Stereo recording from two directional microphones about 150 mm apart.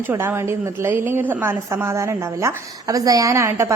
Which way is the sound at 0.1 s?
15° right (ahead or behind).